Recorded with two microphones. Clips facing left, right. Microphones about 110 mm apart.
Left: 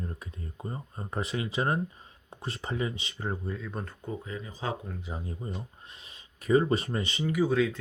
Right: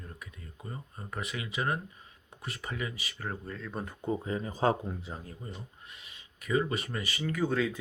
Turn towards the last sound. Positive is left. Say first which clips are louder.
# left 4 dB
turn(degrees=0)  # may be behind; listen again after turning